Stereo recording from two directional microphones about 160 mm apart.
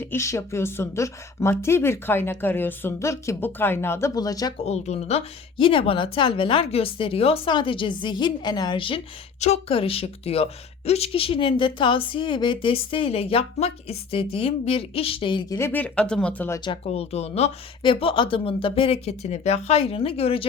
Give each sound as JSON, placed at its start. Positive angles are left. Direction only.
{"t": 0.0, "sound": "a woman's voice", "side_deg": 15}
{"t": 4.5, "sound": "speech", "side_deg": 40}
{"t": 15.5, "sound": "a woman's voice", "side_deg": 15}
{"t": 16.6, "sound": "speech", "side_deg": 40}